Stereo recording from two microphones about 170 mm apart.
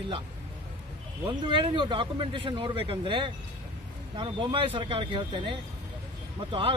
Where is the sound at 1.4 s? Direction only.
30° right (ahead or behind).